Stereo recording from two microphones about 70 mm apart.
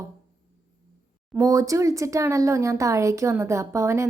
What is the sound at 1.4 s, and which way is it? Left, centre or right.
Speech, right.